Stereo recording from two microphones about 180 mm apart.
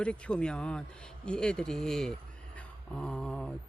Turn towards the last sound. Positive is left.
turn(degrees=5)  # may be behind; listen again after turning